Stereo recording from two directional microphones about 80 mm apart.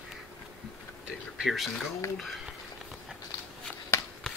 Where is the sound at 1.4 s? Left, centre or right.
Centre.